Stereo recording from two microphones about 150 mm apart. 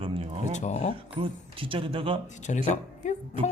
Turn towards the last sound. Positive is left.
turn(degrees=55)  # may be behind; listen again after turning